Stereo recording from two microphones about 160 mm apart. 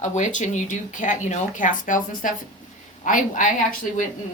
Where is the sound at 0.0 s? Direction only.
50° left (ahead or behind).